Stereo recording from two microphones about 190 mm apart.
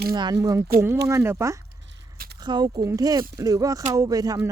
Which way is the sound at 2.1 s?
55° right (ahead or behind).